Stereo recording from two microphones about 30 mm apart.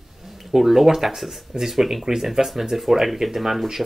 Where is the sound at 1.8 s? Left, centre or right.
Centre.